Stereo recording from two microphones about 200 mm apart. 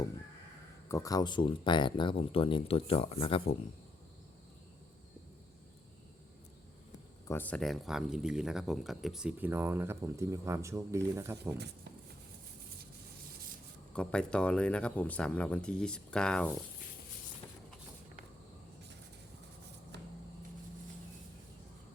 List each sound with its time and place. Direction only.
0.9 s speech: 15° left (ahead or behind)
7.3 s speech: 10° left (ahead or behind); by 11.5 s 15° right (ahead or behind)
13.9 s speech: 5° left (ahead or behind)